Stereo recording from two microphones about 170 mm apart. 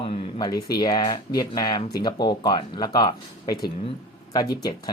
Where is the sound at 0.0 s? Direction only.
30° left (ahead or behind).